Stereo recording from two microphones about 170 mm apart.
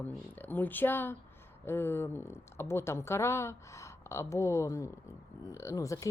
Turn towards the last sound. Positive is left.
turn(degrees=20)  # may be behind; listen again after turning